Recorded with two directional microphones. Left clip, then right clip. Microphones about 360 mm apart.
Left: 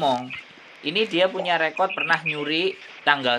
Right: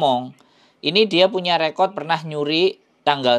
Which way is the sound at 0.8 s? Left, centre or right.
Right.